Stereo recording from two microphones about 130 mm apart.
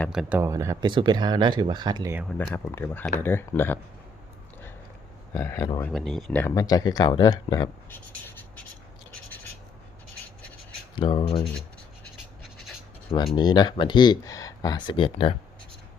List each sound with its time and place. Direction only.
0.1 s speech: 5° right (ahead or behind)
0.3 s speech: 25° right (ahead or behind)
0.9 s speech: 35° right (ahead or behind)
2.5 s speech: 20° left (ahead or behind)
5.3 s speech: 20° left (ahead or behind)
5.9 s speech: centre (ahead or behind)
6.5 s speech: 30° left (ahead or behind)
10.9 s speech: 40° left (ahead or behind)
12.4 s scratch: centre (ahead or behind)
13.3 s speech: 35° left (ahead or behind)